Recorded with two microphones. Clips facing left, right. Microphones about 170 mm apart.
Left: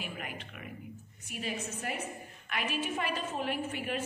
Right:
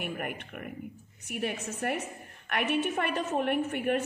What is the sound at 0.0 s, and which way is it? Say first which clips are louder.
A woman's voice: right 6 dB; 55° right (ahead or behind).